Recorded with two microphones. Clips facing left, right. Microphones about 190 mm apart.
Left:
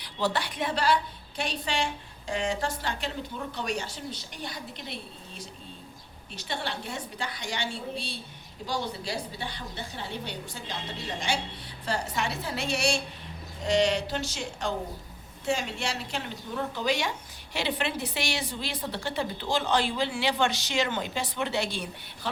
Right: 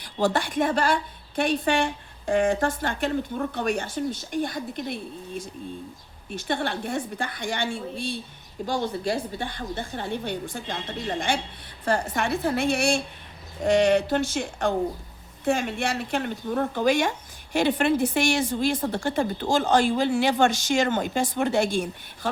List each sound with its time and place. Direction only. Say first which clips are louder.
0.0 s a woman's voice: right 5 dB; 45° right (ahead or behind)